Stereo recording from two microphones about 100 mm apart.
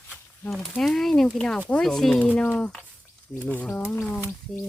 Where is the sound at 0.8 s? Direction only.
5° left (ahead or behind); by 4.3 s 25° left (ahead or behind).